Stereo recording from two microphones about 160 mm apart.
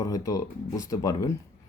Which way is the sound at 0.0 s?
20° left (ahead or behind).